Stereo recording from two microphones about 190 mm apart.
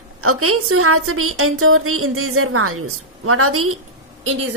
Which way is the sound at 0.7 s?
90° right.